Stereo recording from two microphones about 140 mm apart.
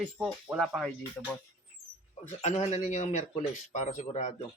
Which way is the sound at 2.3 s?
55° left (ahead or behind).